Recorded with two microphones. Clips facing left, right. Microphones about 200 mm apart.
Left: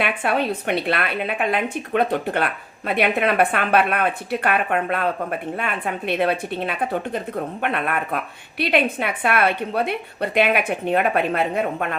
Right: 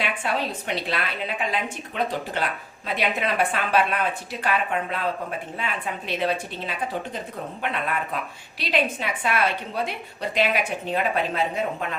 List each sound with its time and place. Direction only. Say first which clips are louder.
0.0 s a woman's voice: left 5 dB; 60° left (ahead or behind)